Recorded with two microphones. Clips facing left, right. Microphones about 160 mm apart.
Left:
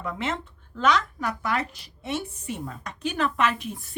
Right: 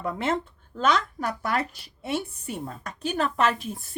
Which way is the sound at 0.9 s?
40° right (ahead or behind).